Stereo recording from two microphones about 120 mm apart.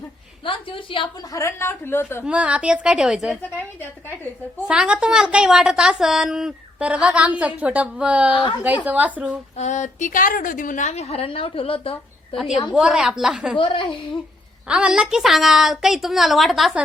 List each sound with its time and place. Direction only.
0.4 s a woman's voice: 45° left (ahead or behind)
1.3 s a woman's voice: 25° left (ahead or behind)
2.2 s a woman's voice: 10° right (ahead or behind)
4.7 s a woman's voice: 5° right (ahead or behind)
9.6 s a woman's voice: 80° left; by 11.9 s 50° left (ahead or behind)
12.3 s a woman's voice: centre (ahead or behind)
13.6 s a woman's voice: 45° left (ahead or behind)
14.7 s a woman's voice: 5° right (ahead or behind)